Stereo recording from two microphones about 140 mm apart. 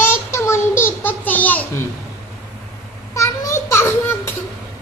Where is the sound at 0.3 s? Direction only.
20° left (ahead or behind).